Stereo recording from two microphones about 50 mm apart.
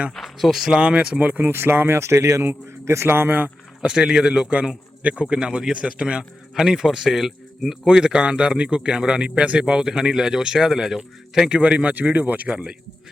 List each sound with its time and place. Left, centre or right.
0.1 s speech: centre
0.7 s speech: centre
1.5 s a man's voice: right
3.1 s speech: right
3.8 s speech: centre